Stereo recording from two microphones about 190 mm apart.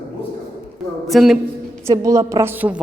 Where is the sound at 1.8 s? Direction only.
15° right (ahead or behind).